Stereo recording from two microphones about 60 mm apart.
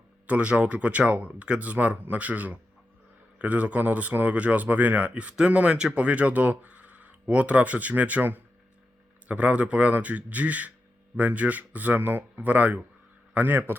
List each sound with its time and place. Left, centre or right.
0.3 s a man's voice: right